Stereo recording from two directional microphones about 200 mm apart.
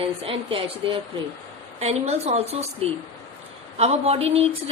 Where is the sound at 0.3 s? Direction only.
25° right (ahead or behind).